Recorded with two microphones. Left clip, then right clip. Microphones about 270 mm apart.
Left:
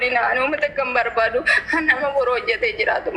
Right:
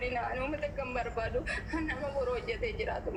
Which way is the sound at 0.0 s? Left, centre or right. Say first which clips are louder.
Left 16 dB; left.